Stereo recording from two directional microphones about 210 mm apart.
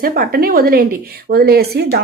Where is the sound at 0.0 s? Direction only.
45° right (ahead or behind).